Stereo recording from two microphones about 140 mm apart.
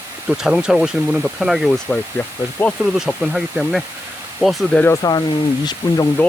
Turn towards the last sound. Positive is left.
turn(degrees=30)  # may be behind; listen again after turning